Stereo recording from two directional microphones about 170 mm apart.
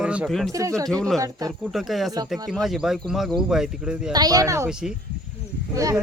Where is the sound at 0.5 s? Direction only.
20° right (ahead or behind).